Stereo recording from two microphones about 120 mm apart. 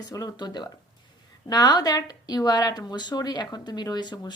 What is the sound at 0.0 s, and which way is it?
A woman's voice, 35° left (ahead or behind).